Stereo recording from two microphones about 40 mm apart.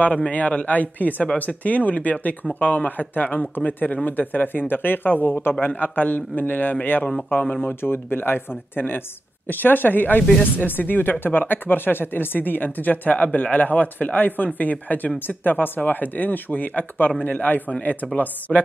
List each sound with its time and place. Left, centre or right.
0.3 s speech: left
7.6 s speech: left